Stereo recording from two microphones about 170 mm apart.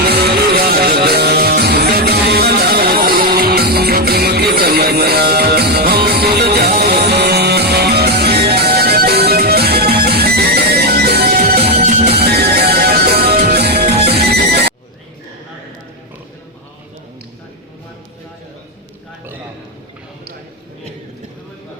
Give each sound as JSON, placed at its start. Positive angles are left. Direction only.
{"t": 0.0, "sound": "music", "side_deg": -65}